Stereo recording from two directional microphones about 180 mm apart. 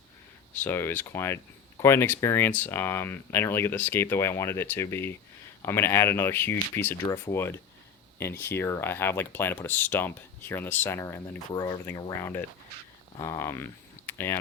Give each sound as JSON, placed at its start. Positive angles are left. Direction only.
{"t": 0.6, "sound": "speech", "side_deg": 10}